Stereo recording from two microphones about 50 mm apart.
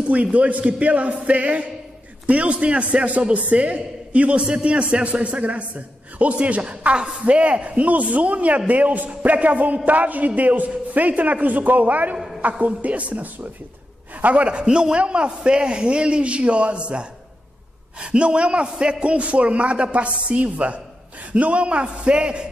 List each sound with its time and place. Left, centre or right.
0.1 s a man's voice: right